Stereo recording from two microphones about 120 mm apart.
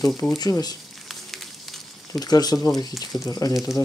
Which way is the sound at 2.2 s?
35° left (ahead or behind).